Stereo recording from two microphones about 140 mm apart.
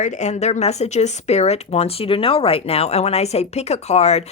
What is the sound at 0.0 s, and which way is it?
Speech, 60° left (ahead or behind).